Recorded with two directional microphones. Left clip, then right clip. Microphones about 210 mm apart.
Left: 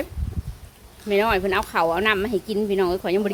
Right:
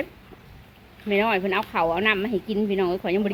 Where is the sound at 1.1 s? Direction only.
5° left (ahead or behind).